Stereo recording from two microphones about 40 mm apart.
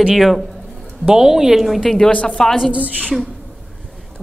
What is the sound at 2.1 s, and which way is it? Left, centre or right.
Speech, left.